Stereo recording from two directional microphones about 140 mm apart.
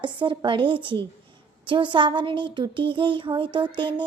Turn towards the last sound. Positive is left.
turn(degrees=-35)  # may be behind; listen again after turning